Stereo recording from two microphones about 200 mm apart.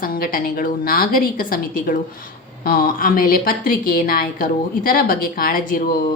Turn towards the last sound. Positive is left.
turn(degrees=45)  # may be behind; listen again after turning